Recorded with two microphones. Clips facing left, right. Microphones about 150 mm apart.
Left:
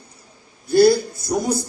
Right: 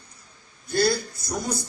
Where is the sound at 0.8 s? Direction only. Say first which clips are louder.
Left 9 dB; 20° left (ahead or behind).